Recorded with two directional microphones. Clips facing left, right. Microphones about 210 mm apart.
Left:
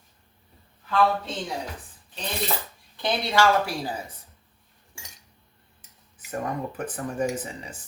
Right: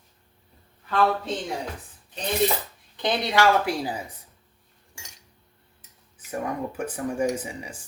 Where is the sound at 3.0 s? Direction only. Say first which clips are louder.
Even; 20° right (ahead or behind).